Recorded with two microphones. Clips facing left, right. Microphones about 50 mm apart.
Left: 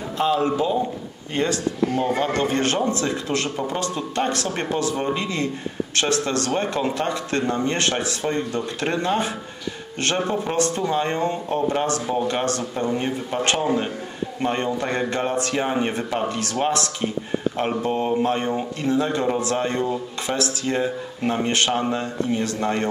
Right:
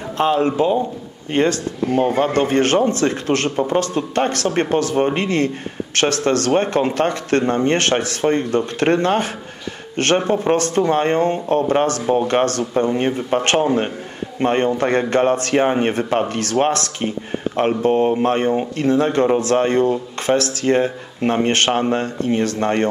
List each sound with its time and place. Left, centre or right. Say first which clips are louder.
0.2 s speech: right 4 dB; right